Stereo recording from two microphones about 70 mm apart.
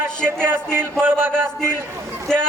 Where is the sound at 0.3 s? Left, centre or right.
Right.